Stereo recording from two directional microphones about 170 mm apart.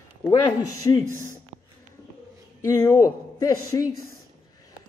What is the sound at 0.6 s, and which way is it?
Speech, 20° left (ahead or behind).